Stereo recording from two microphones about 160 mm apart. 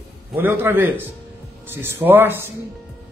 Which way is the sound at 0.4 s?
15° right (ahead or behind).